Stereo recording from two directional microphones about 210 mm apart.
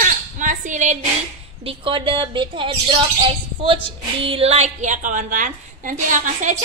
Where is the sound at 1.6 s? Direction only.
25° right (ahead or behind).